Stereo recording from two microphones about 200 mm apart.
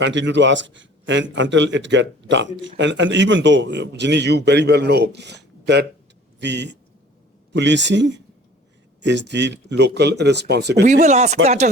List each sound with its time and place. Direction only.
0.0 s a man's voice: 65° right (ahead or behind)
11.0 s speech: 35° right (ahead or behind)